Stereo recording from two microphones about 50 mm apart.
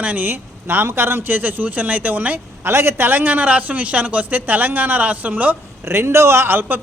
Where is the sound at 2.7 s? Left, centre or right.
Right.